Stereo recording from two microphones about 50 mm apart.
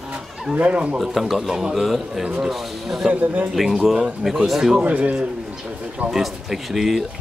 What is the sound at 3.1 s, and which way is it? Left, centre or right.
Speech, right.